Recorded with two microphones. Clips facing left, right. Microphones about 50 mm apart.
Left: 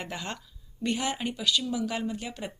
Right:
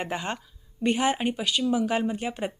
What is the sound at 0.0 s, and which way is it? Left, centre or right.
Speech, right.